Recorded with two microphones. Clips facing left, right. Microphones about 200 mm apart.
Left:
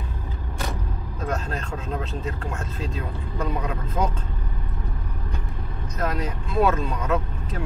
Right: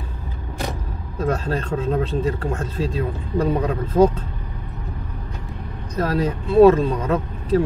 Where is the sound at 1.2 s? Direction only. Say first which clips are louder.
Right 7 dB; 30° right (ahead or behind).